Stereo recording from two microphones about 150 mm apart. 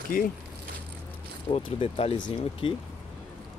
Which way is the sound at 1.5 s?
40° left (ahead or behind).